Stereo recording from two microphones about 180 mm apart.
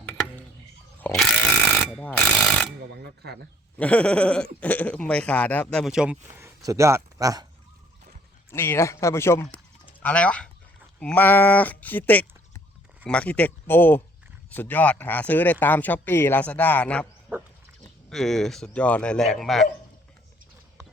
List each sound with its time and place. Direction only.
0.9 s a sound: 10° left (ahead or behind)
1.9 s speech: 5° left (ahead or behind)
3.8 s speech: 5° left (ahead or behind); by 7.4 s 20° right (ahead or behind)
8.4 s speech: 15° left (ahead or behind)
18.1 s speech: centre (ahead or behind)